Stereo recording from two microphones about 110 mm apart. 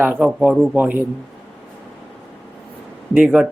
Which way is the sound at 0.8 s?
15° right (ahead or behind).